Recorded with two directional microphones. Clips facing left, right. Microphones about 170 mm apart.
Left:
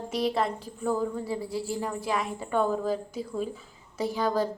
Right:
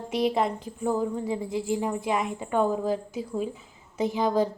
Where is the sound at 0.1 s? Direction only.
15° right (ahead or behind).